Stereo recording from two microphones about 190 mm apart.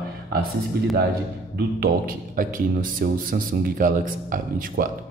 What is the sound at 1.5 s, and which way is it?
A man's voice, 55° right (ahead or behind).